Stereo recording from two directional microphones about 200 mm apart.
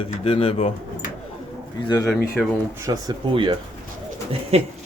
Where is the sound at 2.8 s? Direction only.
20° right (ahead or behind).